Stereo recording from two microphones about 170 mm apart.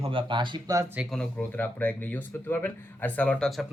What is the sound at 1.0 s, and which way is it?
Speech, centre (ahead or behind).